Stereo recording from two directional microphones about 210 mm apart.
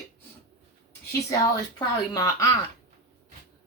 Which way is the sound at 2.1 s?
15° left (ahead or behind).